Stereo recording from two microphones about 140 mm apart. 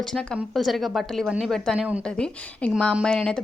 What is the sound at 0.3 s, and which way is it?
A woman's voice, centre (ahead or behind).